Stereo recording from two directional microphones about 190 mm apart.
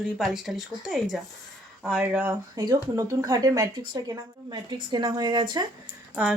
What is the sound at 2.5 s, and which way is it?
Speech, 20° right (ahead or behind).